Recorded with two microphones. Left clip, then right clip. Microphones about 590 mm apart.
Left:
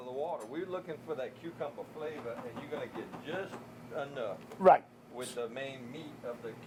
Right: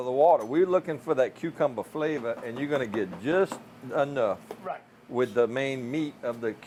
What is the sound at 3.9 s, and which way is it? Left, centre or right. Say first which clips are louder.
Speech: right 13 dB; right.